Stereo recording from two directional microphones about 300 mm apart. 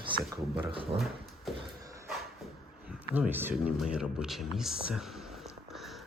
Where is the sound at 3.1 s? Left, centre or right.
Centre.